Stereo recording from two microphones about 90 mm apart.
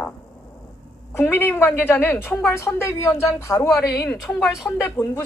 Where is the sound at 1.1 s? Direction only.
25° left (ahead or behind).